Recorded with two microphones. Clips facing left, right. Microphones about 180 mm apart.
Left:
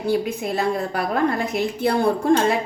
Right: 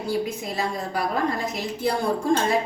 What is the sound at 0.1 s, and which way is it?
A woman's voice, 60° left (ahead or behind).